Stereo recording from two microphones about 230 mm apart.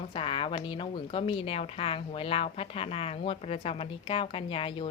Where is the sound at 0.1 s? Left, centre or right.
Left.